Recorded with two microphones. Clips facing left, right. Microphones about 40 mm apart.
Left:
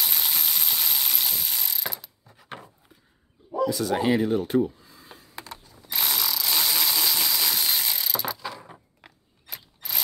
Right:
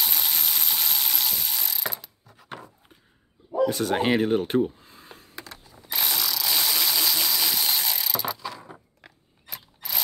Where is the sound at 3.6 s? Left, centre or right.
Right.